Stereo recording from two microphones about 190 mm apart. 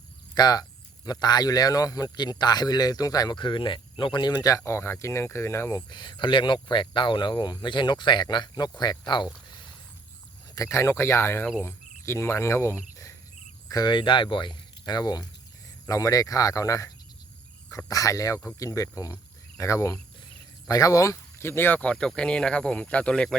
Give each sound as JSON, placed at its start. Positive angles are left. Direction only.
{"t": 0.3, "sound": "speech", "side_deg": 20}
{"t": 10.5, "sound": "speech", "side_deg": 15}
{"t": 11.6, "sound": "cricket", "side_deg": 15}
{"t": 13.7, "sound": "speech", "side_deg": 20}